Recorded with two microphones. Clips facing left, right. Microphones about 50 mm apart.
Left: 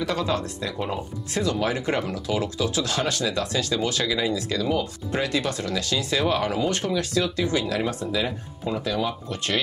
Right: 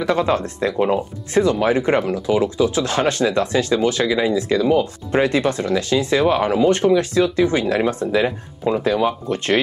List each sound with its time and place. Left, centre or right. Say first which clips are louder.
0.0 s speech: right 7 dB; right